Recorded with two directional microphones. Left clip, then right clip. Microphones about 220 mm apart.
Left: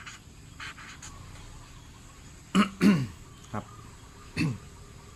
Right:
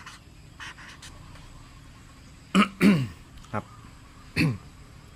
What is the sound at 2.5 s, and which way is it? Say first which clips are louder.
Throat clearing: right 3 dB; 35° right (ahead or behind).